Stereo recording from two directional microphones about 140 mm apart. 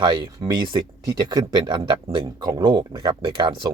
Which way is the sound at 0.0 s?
35° right (ahead or behind).